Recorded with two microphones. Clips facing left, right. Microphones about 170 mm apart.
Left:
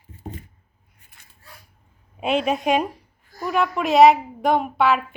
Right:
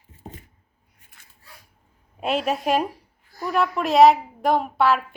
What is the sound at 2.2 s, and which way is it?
A woman's voice, centre (ahead or behind).